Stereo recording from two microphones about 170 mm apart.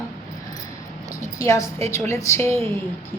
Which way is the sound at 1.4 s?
20° left (ahead or behind).